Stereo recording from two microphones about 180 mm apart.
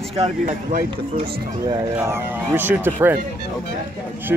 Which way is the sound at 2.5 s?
10° right (ahead or behind).